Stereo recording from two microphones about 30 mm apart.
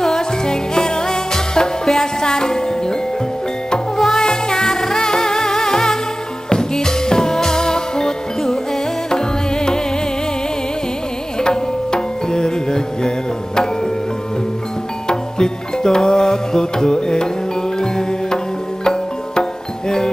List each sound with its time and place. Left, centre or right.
0.0 s music: centre
4.0 s music: centre
4.3 s music: centre
11.3 s music: left
15.0 s music: left